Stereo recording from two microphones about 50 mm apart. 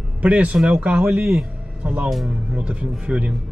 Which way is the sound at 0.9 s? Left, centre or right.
Centre.